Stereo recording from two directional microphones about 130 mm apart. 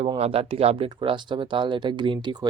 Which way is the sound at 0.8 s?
40° right (ahead or behind).